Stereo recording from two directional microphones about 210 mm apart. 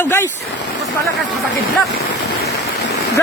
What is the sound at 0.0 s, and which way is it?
Speech, 10° left (ahead or behind).